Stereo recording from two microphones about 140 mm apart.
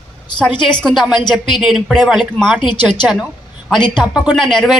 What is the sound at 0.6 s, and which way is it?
Speech, 35° left (ahead or behind).